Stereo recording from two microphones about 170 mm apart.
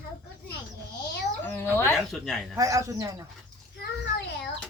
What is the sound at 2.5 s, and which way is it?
Speech, 20° right (ahead or behind).